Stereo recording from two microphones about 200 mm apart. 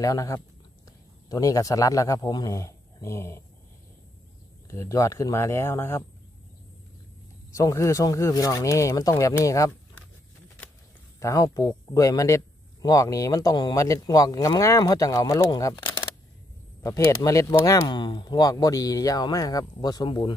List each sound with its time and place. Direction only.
0.0 s speech: 15° left (ahead or behind)
4.6 s speech: 15° left (ahead or behind)
7.5 s speech: 15° left (ahead or behind)
11.1 s speech: 15° left (ahead or behind)